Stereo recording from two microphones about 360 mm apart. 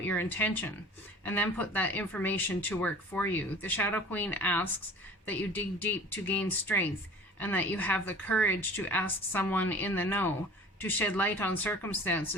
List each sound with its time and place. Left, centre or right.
0.0 s speech: centre